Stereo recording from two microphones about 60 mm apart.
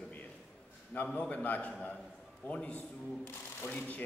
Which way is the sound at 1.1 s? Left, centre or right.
Left.